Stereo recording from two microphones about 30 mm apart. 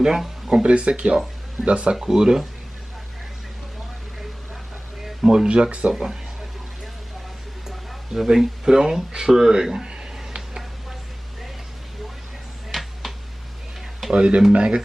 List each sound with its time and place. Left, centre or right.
0.5 s speech: right
2.0 s speech: centre
5.2 s speech: right
5.5 s speech: right
8.1 s speech: centre
9.5 s speech: right
9.8 s a sound: right
12.7 s a sound: centre
14.1 s speech: right